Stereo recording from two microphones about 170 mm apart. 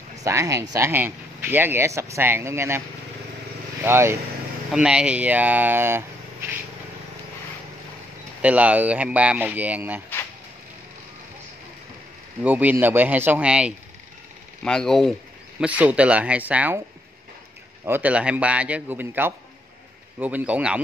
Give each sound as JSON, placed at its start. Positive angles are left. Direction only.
{"t": 0.2, "sound": "speech", "side_deg": -20}
{"t": 3.8, "sound": "speech", "side_deg": -15}
{"t": 8.4, "sound": "speech", "side_deg": -10}
{"t": 12.4, "sound": "speech", "side_deg": -10}
{"t": 15.6, "sound": "speech", "side_deg": -10}
{"t": 17.8, "sound": "speech", "side_deg": -10}